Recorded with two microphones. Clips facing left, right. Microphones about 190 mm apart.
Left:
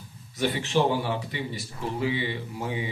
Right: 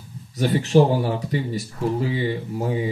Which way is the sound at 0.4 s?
40° right (ahead or behind).